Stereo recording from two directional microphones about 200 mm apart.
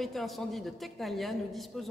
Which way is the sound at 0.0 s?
Centre (ahead or behind).